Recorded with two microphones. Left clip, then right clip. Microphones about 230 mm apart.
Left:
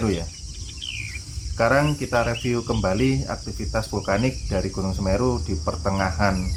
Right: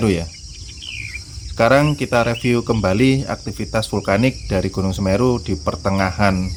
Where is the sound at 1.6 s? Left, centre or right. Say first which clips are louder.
Right 6 dB; right.